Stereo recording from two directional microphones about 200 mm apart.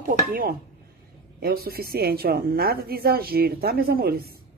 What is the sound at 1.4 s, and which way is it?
A woman's voice, 50° right (ahead or behind).